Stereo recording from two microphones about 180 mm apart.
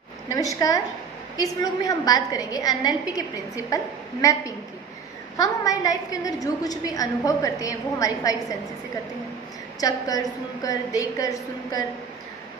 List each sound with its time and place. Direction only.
0.3 s a woman's voice: 20° left (ahead or behind)
9.8 s a woman's voice: 20° left (ahead or behind)